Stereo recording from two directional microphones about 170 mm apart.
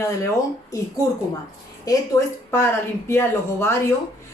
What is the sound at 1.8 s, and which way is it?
Speech, 20° left (ahead or behind).